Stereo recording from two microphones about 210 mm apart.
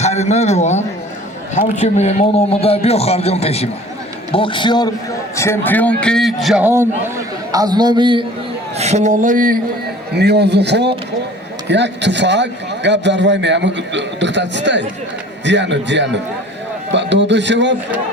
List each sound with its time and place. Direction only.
0.0 s a man's voice: 30° left (ahead or behind)
5.4 s a man's voice: 10° left (ahead or behind); by 8.2 s 20° right (ahead or behind)
8.8 s speech: 35° right (ahead or behind)
10.2 s a man's voice: 50° right (ahead or behind)